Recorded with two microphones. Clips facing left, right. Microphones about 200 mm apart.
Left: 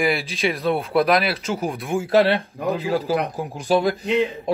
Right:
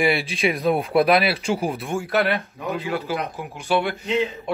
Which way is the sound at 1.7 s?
Centre (ahead or behind).